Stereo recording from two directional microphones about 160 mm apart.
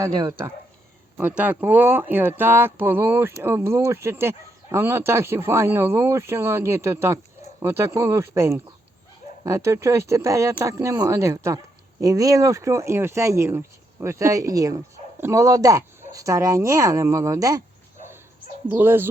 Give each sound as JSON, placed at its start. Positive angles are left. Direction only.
{"t": 0.0, "sound": "speech", "side_deg": -20}
{"t": 18.7, "sound": "speech", "side_deg": -15}